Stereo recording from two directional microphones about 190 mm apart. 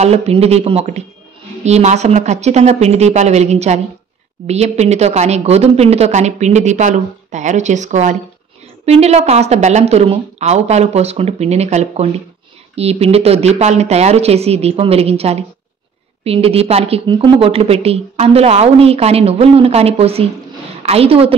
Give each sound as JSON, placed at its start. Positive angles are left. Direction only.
{"t": 0.0, "sound": "speech", "side_deg": -35}